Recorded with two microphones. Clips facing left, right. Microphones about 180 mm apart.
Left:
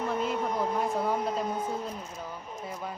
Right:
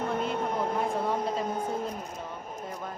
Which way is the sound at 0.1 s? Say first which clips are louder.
Even; centre (ahead or behind).